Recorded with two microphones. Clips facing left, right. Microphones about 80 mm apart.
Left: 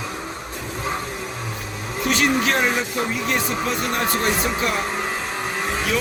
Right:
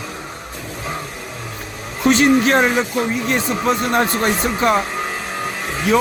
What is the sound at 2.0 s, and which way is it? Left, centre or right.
Speech, right.